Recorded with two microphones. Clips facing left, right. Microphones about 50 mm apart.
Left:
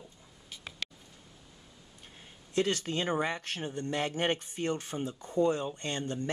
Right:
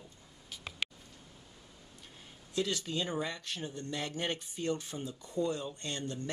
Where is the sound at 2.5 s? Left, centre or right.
Left.